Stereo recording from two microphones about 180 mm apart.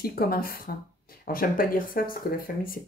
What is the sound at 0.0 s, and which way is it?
Speech, 55° left (ahead or behind).